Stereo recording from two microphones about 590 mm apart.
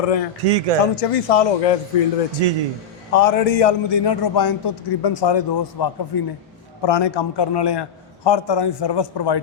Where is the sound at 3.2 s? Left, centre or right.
Left.